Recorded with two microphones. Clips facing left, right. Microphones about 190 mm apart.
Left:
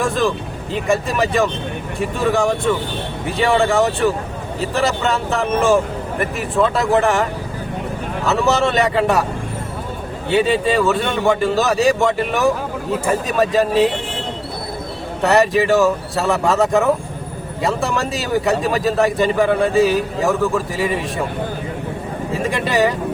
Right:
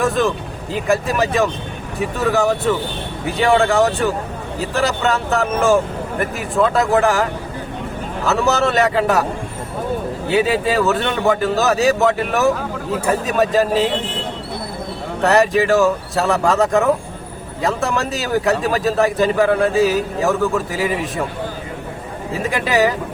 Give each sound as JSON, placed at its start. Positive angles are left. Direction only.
{"t": 0.0, "sound": "a man's voice", "side_deg": 0}
{"t": 10.2, "sound": "a man's voice", "side_deg": 0}
{"t": 15.2, "sound": "a man's voice", "side_deg": 0}
{"t": 22.3, "sound": "a man's voice", "side_deg": 0}